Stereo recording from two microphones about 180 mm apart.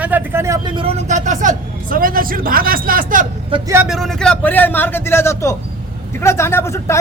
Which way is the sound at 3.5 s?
25° right (ahead or behind).